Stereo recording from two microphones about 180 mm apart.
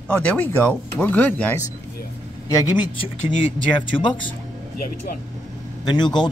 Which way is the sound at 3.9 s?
25° left (ahead or behind).